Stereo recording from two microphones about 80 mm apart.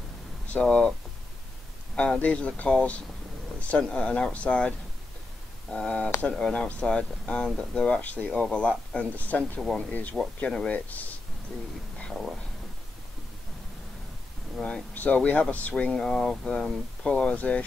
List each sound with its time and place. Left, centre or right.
0.5 s speech: centre
2.0 s speech: centre
10.7 s speech: centre
12.1 s a sound: centre
14.6 s speech: centre